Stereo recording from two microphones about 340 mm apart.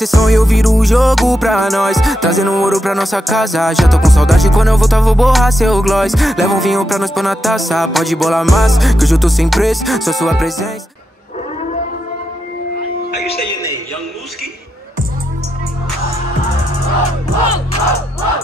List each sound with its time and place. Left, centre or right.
0.0 s music: centre